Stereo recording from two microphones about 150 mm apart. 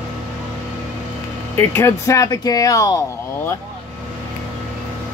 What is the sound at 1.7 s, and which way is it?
Speech, 20° left (ahead or behind).